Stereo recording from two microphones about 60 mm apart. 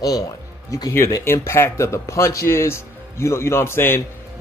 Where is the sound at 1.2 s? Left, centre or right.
Left.